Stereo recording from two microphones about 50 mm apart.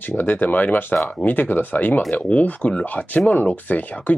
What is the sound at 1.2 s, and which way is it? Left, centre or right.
Speech, left.